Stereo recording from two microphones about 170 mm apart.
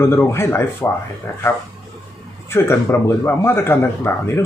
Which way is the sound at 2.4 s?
15° left (ahead or behind).